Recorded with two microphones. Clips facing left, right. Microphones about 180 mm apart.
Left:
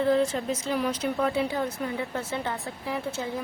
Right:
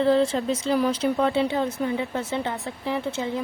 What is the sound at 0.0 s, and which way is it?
A woman's voice, 30° right (ahead or behind).